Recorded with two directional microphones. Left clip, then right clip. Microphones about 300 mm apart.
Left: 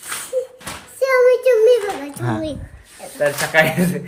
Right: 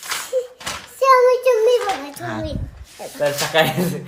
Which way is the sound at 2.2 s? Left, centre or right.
Centre.